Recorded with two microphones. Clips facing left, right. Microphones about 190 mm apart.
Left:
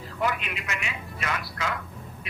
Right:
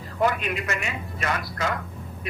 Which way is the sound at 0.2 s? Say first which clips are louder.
Right 5 dB; 45° right (ahead or behind).